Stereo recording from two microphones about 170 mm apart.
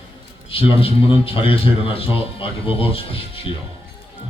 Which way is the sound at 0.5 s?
35° left (ahead or behind).